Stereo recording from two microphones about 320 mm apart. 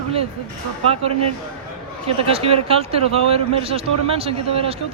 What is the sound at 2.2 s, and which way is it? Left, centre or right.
Speech, centre.